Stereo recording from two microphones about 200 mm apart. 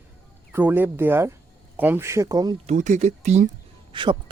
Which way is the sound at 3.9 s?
25° right (ahead or behind).